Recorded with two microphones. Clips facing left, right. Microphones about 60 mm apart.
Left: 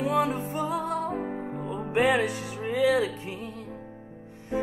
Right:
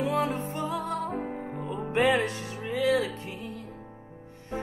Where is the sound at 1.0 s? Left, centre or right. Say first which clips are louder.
Left 2 dB; left.